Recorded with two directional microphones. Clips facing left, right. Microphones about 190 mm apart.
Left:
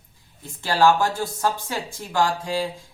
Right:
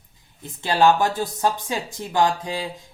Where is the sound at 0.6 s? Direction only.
20° right (ahead or behind).